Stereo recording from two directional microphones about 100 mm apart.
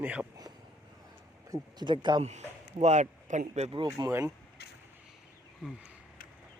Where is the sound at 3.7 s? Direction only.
50° right (ahead or behind).